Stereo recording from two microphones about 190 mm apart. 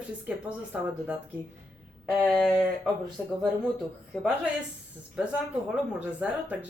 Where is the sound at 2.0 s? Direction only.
Centre (ahead or behind).